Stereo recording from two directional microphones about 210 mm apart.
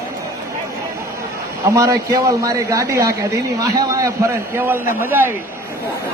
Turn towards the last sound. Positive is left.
turn(degrees=-10)  # may be behind; listen again after turning